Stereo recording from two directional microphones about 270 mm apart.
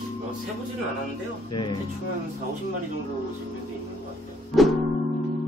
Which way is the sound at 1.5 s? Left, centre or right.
Centre.